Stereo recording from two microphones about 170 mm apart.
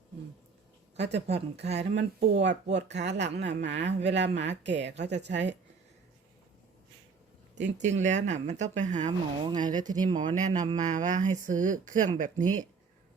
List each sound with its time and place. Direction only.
0.9 s speech: 90° right
1.3 s speech: 40° right (ahead or behind)
1.8 s speech: 90° right
7.8 s speech: 45° right (ahead or behind)
9.0 s speech: 25° right (ahead or behind)
10.2 s speech: 45° right (ahead or behind)